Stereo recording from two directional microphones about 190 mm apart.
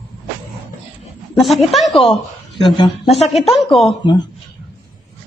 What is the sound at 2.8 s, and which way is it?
Speech, 30° left (ahead or behind).